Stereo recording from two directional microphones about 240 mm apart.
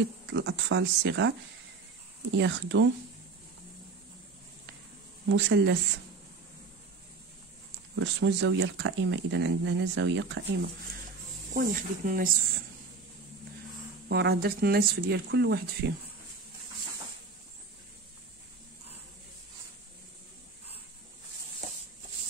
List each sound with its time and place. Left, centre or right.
0.3 s speech: right
2.3 s speech: right
5.3 s speech: right
7.9 s speech: right
11.5 s speech: right
14.0 s speech: right